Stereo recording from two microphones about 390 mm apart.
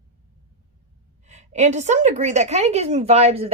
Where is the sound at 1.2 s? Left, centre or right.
Centre.